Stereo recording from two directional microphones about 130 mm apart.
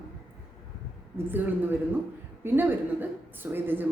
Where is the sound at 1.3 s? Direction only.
15° right (ahead or behind).